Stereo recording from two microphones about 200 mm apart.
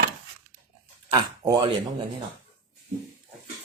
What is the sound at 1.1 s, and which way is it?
Speech, 25° right (ahead or behind).